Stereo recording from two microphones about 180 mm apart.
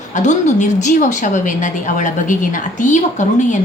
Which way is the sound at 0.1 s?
40° left (ahead or behind).